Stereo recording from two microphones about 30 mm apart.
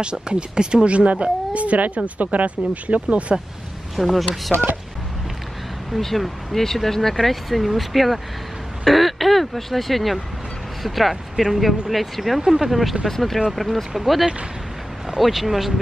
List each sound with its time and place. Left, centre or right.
0.0 s speech: right
0.8 s speech: right
3.9 s speech: centre
5.9 s speech: centre
13.1 s speech: centre